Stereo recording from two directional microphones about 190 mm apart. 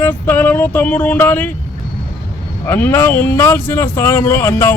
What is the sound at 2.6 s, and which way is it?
A man's voice, 10° left (ahead or behind).